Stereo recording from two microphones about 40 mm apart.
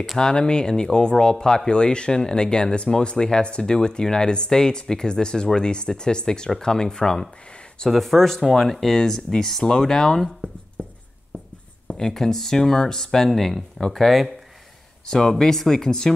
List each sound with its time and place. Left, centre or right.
0.2 s speech: left
7.9 s speech: centre
10.8 s writing: centre
11.9 s speech: centre
14.0 s speech: centre
15.0 s speech: centre